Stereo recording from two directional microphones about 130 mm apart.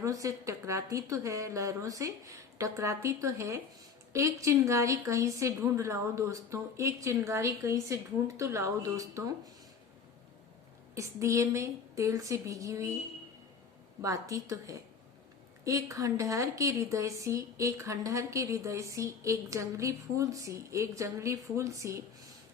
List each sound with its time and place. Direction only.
0.0 s a woman's voice: 25° right (ahead or behind)
10.9 s a woman's voice: 25° right (ahead or behind)
14.0 s a woman's voice: 25° right (ahead or behind)